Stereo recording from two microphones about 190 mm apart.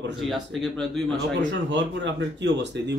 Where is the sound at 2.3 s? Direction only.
70° right (ahead or behind).